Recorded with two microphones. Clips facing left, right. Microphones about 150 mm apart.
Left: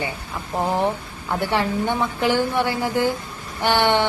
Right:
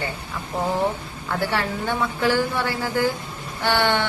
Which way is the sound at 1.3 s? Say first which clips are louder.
Left 3 dB; 20° left (ahead or behind).